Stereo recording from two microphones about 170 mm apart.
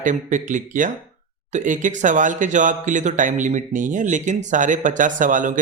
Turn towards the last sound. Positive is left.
turn(degrees=-50)  # may be behind; listen again after turning